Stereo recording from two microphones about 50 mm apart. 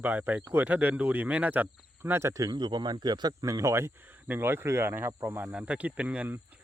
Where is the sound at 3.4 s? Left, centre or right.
Right.